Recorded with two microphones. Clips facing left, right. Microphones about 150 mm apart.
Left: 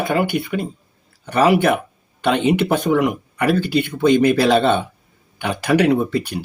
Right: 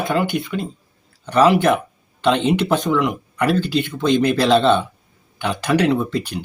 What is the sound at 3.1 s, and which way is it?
Speech, 10° left (ahead or behind).